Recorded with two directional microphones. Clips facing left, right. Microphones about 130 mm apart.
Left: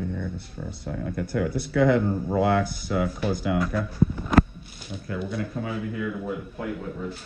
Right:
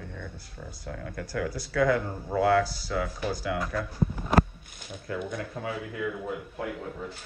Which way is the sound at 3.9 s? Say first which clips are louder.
Left 5 dB; 15° right (ahead or behind).